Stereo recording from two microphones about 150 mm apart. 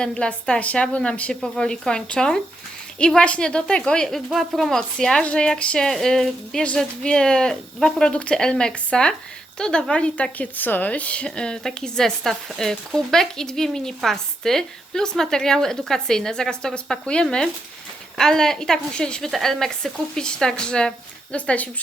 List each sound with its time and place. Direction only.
0.0 s a woman's voice: 5° left (ahead or behind)